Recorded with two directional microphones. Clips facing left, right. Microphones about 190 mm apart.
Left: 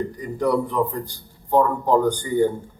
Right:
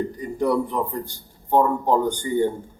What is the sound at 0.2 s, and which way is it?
Speech, 25° right (ahead or behind).